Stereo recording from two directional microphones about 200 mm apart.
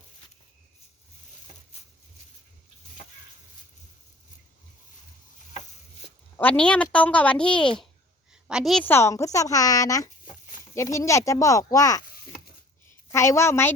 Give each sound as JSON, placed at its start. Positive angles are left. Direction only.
{"t": 6.3, "sound": "a woman's voice", "side_deg": 5}
{"t": 13.1, "sound": "a woman's voice", "side_deg": 15}